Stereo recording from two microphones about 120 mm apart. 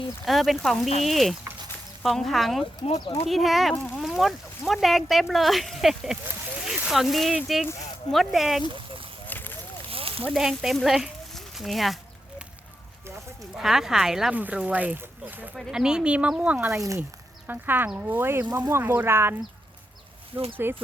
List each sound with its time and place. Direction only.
0.3 s speech: centre (ahead or behind)
9.2 s a sound: 15° left (ahead or behind)
9.9 s a sound: 50° right (ahead or behind)
10.3 s speech: 5° right (ahead or behind)
13.5 s speech: 5° right (ahead or behind)
16.7 s speech: 25° right (ahead or behind)
17.0 s speech: 15° right (ahead or behind)